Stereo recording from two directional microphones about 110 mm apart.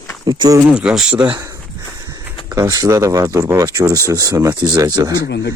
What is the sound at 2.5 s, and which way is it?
Speech, 30° right (ahead or behind).